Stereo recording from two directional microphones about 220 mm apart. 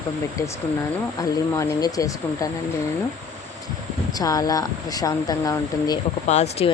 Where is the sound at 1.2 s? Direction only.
15° left (ahead or behind).